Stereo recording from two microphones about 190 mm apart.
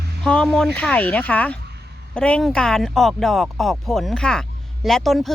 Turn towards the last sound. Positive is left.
turn(degrees=0)  # may be behind; listen again after turning